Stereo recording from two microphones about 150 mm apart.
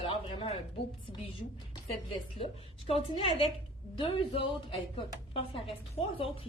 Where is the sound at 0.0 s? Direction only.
40° left (ahead or behind).